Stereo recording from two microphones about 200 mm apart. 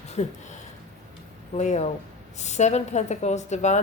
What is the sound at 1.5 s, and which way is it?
A woman's voice, 35° left (ahead or behind).